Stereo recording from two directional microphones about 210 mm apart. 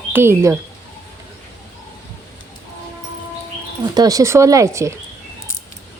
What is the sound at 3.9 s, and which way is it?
Speech, 15° right (ahead or behind).